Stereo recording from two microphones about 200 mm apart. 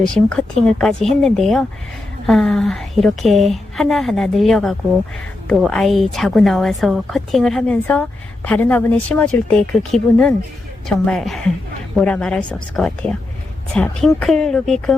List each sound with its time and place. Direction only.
0.3 s a woman's voice: 5° left (ahead or behind)